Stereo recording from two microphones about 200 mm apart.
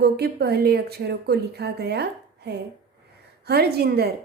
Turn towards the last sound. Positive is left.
turn(degrees=-50)  # may be behind; listen again after turning